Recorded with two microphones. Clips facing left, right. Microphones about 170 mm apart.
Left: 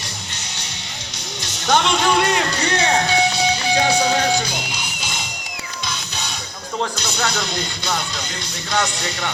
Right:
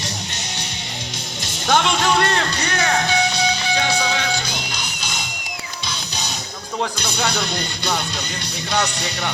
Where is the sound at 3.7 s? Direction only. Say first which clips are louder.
Left 7 dB; 35° left (ahead or behind).